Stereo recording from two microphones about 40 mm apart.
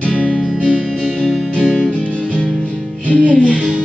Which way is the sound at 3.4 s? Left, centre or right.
Right.